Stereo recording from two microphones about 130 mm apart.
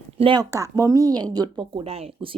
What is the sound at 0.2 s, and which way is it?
Speech, 40° right (ahead or behind).